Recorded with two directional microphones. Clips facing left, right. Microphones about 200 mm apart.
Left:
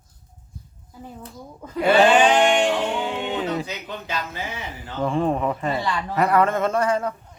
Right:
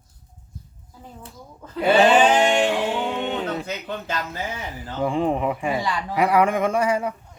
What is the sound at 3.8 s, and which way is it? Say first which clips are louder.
Speech: right 2 dB; 50° right (ahead or behind).